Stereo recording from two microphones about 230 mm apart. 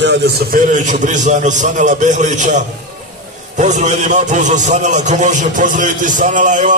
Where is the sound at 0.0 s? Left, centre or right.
Right.